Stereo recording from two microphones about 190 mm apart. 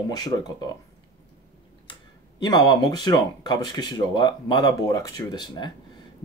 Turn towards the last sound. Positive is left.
turn(degrees=20)  # may be behind; listen again after turning